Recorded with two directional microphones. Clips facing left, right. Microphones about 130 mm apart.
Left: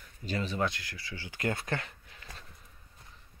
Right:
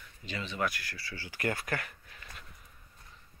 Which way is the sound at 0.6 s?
20° left (ahead or behind).